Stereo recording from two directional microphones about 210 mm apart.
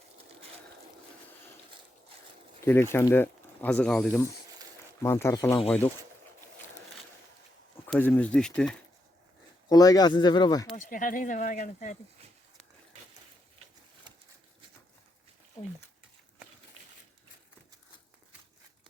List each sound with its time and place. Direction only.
2.6 s speech: 10° left (ahead or behind)
5.0 s speech: 15° left (ahead or behind)
5.5 s speech: 25° left (ahead or behind)
7.9 s speech: 10° left (ahead or behind)
9.6 s speech: 15° left (ahead or behind)
10.8 s speech: 40° left (ahead or behind)